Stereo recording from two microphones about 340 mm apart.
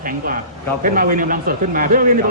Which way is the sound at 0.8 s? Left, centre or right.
Right.